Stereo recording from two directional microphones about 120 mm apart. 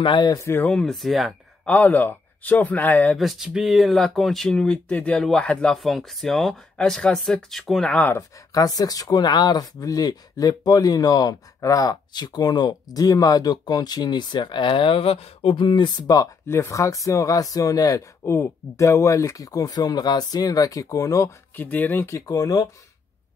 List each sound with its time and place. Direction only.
0.0 s speech: 40° left (ahead or behind)
0.4 s speech: 20° left (ahead or behind)
0.7 s speech: 5° left (ahead or behind)
1.7 s a man's voice: 10° left (ahead or behind)
3.2 s speech: centre (ahead or behind)
8.2 s speech: 30° left (ahead or behind)
21.5 s speech: 15° left (ahead or behind)